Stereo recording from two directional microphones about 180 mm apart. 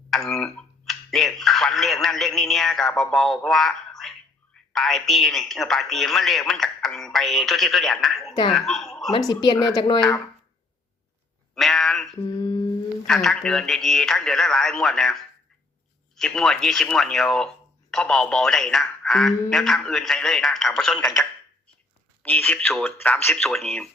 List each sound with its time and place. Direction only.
0.1 s a woman's voice: centre (ahead or behind)
9.1 s speech: 20° left (ahead or behind)
11.5 s a sound: centre (ahead or behind)
12.2 s humming: 20° left (ahead or behind)
13.1 s speech: centre (ahead or behind)